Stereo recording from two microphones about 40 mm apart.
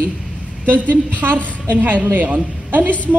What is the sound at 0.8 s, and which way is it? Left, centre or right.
A woman's voice, right.